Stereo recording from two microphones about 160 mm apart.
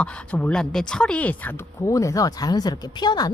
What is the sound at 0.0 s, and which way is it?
Speech, 10° left (ahead or behind).